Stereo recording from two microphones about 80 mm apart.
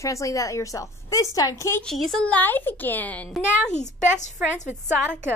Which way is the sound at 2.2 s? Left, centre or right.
Centre.